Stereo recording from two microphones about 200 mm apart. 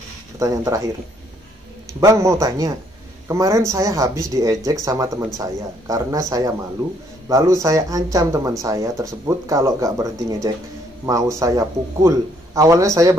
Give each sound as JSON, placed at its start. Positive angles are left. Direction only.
{"t": 0.4, "sound": "speech", "side_deg": -15}
{"t": 2.0, "sound": "speech", "side_deg": -15}